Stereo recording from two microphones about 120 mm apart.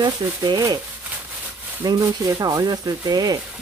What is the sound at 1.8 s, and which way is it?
Speech, 30° right (ahead or behind).